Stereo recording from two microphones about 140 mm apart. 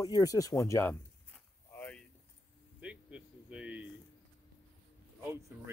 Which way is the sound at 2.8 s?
10° right (ahead or behind).